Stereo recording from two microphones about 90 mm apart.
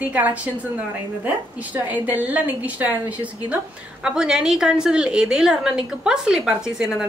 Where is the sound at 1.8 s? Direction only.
20° right (ahead or behind).